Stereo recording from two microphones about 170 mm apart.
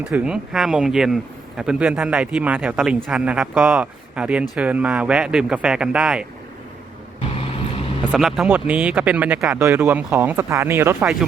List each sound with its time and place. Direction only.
0.0 s a man's voice: 10° right (ahead or behind)
7.3 s vehicle: 35° left (ahead or behind)
8.1 s a man's voice: centre (ahead or behind)